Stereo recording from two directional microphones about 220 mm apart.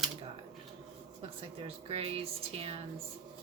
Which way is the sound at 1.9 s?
25° right (ahead or behind).